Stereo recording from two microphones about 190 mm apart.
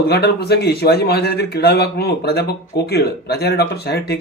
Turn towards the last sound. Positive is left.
turn(degrees=60)  # may be behind; listen again after turning